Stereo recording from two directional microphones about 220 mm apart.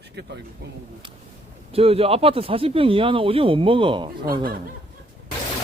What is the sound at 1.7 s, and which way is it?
Speech, 25° right (ahead or behind).